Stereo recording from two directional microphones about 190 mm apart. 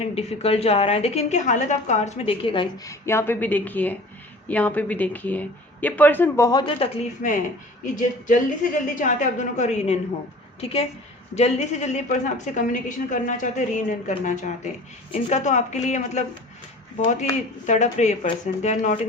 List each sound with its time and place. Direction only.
0.0 s a woman's voice: 35° left (ahead or behind)